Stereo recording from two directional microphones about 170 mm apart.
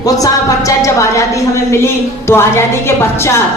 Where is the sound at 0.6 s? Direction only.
20° left (ahead or behind).